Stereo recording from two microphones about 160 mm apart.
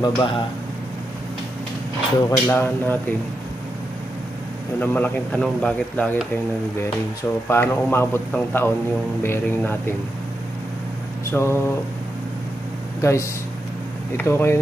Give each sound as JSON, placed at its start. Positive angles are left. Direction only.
{"t": 0.0, "sound": "speech", "side_deg": 30}
{"t": 2.2, "sound": "speech", "side_deg": 15}
{"t": 4.7, "sound": "speech", "side_deg": 10}
{"t": 7.4, "sound": "speech", "side_deg": 15}
{"t": 11.2, "sound": "speech", "side_deg": 15}
{"t": 13.0, "sound": "speech", "side_deg": 20}